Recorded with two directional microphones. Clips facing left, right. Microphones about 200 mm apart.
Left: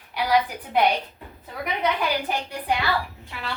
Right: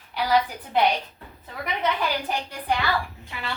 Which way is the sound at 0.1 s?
10° left (ahead or behind).